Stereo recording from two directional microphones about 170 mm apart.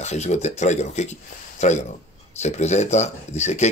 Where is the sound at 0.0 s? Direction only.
40° left (ahead or behind).